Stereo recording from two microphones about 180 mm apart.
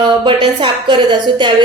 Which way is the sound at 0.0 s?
25° right (ahead or behind).